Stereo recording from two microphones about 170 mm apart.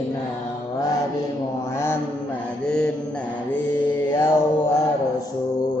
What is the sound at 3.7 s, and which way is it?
Mantra, 10° left (ahead or behind).